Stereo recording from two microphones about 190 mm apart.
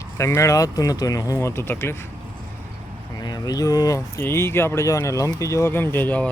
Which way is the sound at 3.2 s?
20° left (ahead or behind).